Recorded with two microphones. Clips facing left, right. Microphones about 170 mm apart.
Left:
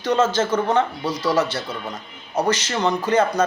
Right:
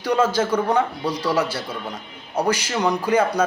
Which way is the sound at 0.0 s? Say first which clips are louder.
Even; 10° right (ahead or behind).